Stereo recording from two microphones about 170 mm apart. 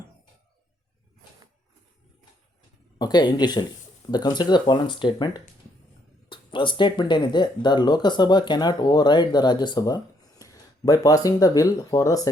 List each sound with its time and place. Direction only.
3.0 s speech: 25° left (ahead or behind)